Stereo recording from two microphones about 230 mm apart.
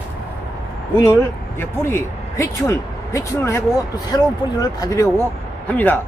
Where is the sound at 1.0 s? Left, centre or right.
Centre.